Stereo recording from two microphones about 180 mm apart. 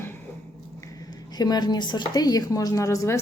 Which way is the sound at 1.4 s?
25° left (ahead or behind).